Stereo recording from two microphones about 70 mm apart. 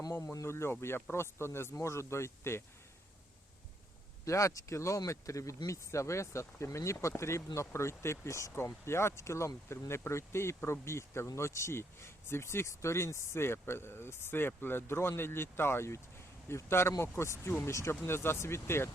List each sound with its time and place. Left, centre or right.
0.1 s speech: left
4.3 s speech: left